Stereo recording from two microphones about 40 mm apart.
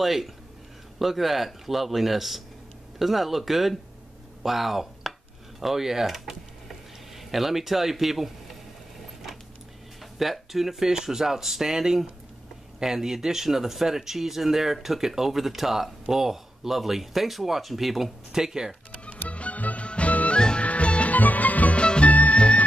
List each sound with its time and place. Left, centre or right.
0.0 s a man's voice: centre
5.6 s a sound: centre
10.1 s speech: centre
18.9 s music: left
20.3 s music: left
21.2 s music: left
21.8 s music: left
22.1 s music: left
22.4 s music: left